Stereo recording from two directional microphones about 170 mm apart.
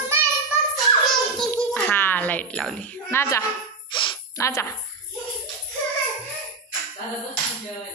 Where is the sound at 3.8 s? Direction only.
30° left (ahead or behind).